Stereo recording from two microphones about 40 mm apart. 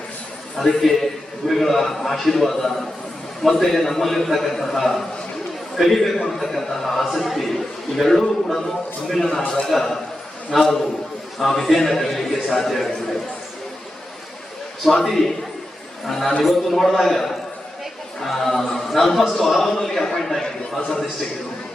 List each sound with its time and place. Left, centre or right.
0.5 s a man's voice: centre
6.0 s a man's voice: centre
14.8 s a man's voice: centre